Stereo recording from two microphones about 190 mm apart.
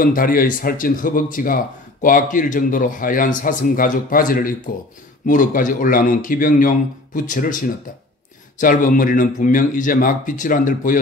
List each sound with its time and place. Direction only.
0.0 s speech: 45° left (ahead or behind)